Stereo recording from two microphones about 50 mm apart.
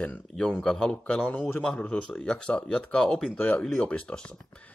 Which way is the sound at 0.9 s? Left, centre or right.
Left.